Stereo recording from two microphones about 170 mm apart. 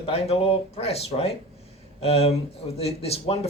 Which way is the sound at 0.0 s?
35° left (ahead or behind).